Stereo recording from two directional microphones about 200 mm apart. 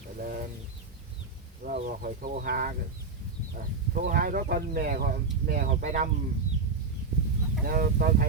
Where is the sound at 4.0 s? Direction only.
45° right (ahead or behind).